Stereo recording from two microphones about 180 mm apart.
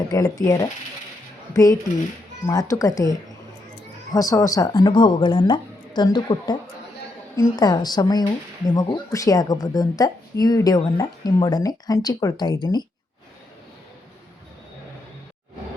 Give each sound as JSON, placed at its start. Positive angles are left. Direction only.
{"t": 0.1, "sound": "speech", "side_deg": 20}